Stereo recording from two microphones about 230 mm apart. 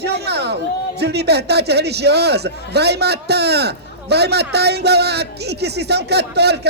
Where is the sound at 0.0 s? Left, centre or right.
Right.